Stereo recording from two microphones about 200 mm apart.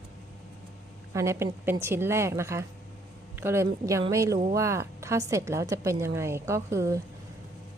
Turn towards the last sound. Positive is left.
turn(degrees=-15)  # may be behind; listen again after turning